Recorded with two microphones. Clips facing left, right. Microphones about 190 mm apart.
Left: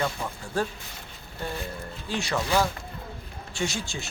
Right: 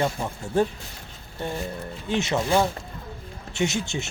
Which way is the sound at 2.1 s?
20° right (ahead or behind).